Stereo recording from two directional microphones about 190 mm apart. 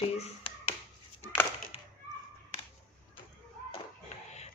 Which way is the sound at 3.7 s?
35° left (ahead or behind).